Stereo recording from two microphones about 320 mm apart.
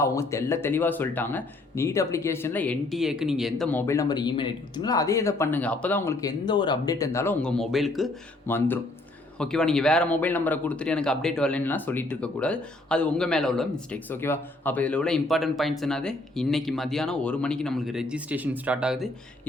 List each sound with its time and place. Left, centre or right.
0.0 s speech: centre